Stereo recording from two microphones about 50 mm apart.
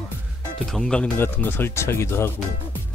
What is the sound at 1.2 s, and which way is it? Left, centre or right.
Speech, left.